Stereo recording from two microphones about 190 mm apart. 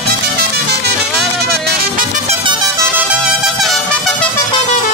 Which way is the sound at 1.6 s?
50° right (ahead or behind).